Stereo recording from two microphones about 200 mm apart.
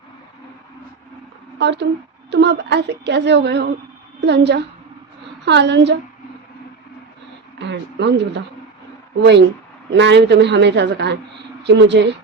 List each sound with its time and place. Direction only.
1.5 s a woman's voice: 60° right (ahead or behind)
7.6 s speech: 60° right (ahead or behind)
9.9 s a woman's voice: 60° right (ahead or behind)